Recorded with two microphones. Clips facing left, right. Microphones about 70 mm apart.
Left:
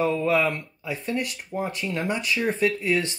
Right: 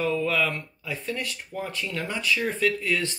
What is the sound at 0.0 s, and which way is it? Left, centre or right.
Speech, left.